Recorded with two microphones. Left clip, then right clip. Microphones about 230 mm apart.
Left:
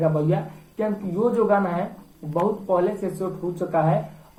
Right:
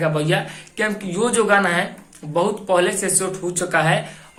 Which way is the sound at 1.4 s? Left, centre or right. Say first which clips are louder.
Right 5 dB; right.